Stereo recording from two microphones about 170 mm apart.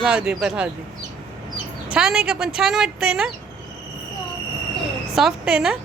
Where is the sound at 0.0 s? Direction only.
5° right (ahead or behind).